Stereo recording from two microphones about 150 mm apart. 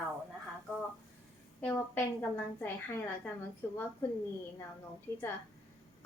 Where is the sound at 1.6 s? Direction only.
10° left (ahead or behind).